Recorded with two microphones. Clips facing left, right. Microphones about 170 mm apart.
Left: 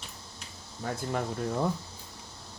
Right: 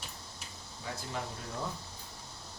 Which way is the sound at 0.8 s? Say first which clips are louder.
Left 8 dB; 55° left (ahead or behind).